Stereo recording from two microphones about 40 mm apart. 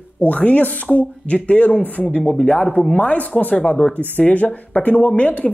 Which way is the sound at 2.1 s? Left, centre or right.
Left.